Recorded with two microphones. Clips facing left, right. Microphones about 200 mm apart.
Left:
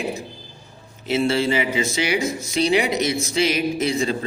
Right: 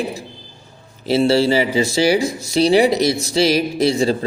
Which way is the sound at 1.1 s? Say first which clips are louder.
Right 5 dB; 35° right (ahead or behind).